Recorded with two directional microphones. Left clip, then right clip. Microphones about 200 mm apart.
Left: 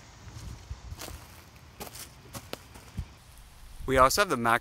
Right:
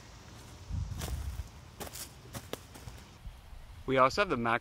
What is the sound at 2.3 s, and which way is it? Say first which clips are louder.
Clip-clop: left 2 dB; 15° left (ahead or behind).